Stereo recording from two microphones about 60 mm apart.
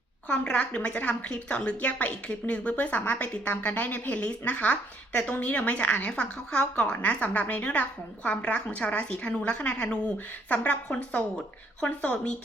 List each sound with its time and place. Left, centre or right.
0.3 s a woman's voice: centre